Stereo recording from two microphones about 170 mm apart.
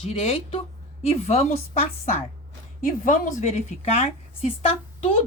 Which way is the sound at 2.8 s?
55° left (ahead or behind).